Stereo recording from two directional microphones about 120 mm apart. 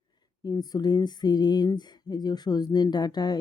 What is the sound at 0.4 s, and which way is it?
Speech, 35° left (ahead or behind).